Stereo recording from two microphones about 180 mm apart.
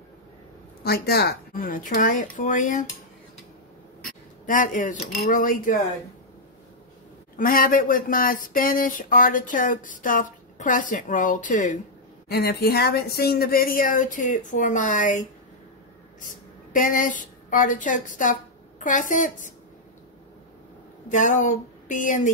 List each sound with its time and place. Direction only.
0.8 s speech: 60° left (ahead or behind); by 2.9 s 45° left (ahead or behind)
4.5 s speech: 45° left (ahead or behind)
7.3 s speech: 50° left (ahead or behind)
12.3 s speech: 60° left (ahead or behind); by 15.2 s 40° left (ahead or behind)
16.7 s a woman's voice: 50° left (ahead or behind)
21.1 s speech: 45° left (ahead or behind)